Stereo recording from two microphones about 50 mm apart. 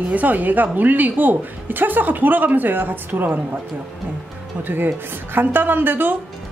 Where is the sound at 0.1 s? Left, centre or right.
Right.